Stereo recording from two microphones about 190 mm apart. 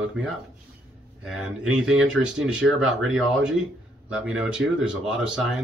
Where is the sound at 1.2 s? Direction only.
5° right (ahead or behind).